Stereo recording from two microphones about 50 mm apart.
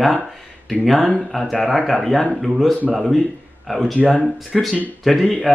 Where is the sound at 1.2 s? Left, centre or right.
Centre.